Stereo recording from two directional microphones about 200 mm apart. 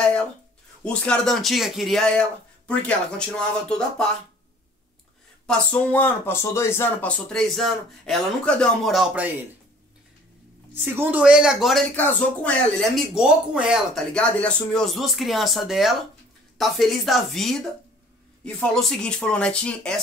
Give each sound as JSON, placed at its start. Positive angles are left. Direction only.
{"t": 0.8, "sound": "speech", "side_deg": 5}
{"t": 5.5, "sound": "speech", "side_deg": 5}
{"t": 10.7, "sound": "speech", "side_deg": -10}